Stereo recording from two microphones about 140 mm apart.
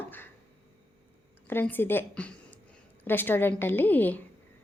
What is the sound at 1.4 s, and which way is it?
A woman's voice, 15° left (ahead or behind).